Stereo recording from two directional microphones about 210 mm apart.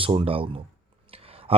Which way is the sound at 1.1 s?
25° right (ahead or behind).